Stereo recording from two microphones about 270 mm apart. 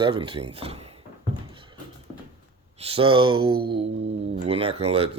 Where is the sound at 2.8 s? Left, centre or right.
Right.